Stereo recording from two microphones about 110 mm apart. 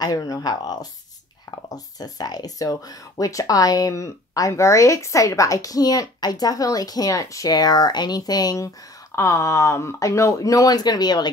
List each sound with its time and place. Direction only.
0.0 s speech: 35° left (ahead or behind)